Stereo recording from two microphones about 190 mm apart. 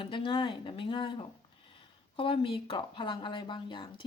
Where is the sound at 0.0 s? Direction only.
25° left (ahead or behind).